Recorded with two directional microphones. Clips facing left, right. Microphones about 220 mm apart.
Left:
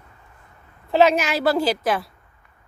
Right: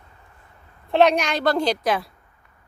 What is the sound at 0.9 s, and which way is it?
A woman's voice, 5° left (ahead or behind).